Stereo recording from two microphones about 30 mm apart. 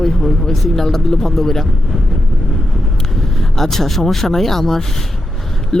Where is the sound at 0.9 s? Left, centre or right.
Centre.